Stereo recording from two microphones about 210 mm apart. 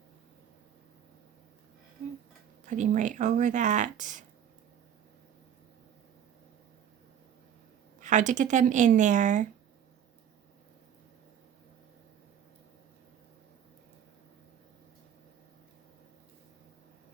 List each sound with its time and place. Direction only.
2.6 s speech: 35° right (ahead or behind)
8.0 s speech: 35° right (ahead or behind)